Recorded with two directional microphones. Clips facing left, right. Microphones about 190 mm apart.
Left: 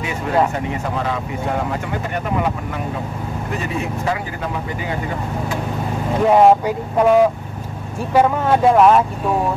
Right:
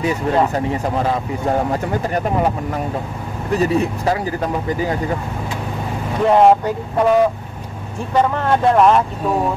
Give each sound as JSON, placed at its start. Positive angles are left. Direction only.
{"t": 0.7, "sound": "speech", "side_deg": -35}
{"t": 3.5, "sound": "speech", "side_deg": -35}
{"t": 6.3, "sound": "speech", "side_deg": 5}